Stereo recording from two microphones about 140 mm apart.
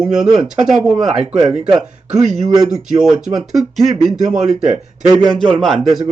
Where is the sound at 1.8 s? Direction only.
60° right (ahead or behind).